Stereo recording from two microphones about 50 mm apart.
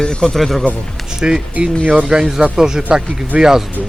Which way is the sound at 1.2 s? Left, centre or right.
Centre.